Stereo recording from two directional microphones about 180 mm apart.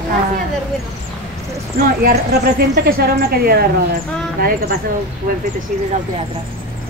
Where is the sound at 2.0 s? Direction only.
60° right (ahead or behind).